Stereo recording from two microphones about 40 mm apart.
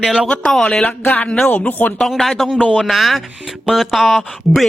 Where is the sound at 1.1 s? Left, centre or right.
Left.